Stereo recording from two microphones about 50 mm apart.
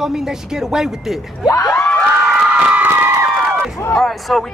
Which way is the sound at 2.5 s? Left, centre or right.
Right.